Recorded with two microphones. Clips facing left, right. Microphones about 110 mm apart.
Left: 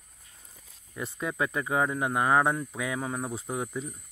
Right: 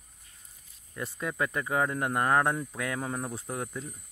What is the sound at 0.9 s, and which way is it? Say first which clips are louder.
Speech: left 1 dB; 5° left (ahead or behind).